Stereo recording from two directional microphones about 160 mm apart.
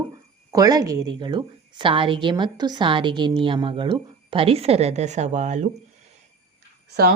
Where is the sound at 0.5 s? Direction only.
25° right (ahead or behind); by 5.6 s 45° right (ahead or behind).